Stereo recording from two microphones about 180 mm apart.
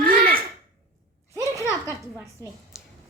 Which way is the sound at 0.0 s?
50° right (ahead or behind).